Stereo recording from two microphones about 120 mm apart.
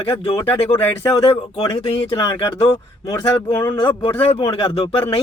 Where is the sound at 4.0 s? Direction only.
50° left (ahead or behind).